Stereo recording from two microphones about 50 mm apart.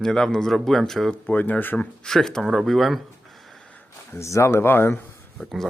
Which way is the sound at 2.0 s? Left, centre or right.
Centre.